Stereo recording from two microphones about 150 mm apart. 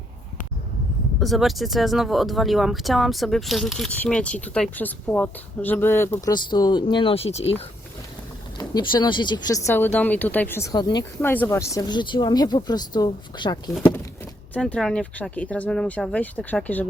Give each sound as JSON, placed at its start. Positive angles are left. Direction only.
{"t": 1.2, "sound": "speech", "side_deg": 0}
{"t": 6.3, "sound": "speech", "side_deg": 30}
{"t": 8.5, "sound": "speech", "side_deg": 30}
{"t": 11.2, "sound": "speech", "side_deg": 15}
{"t": 14.5, "sound": "speech", "side_deg": 5}